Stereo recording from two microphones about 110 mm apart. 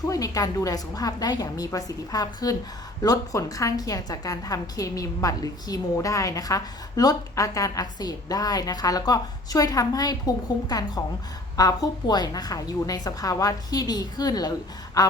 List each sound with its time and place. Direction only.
0.1 s a woman's voice: 35° left (ahead or behind)